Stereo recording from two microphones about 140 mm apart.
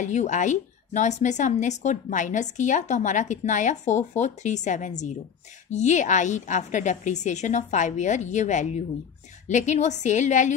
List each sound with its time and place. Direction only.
0.0 s a woman's voice: 60° left (ahead or behind)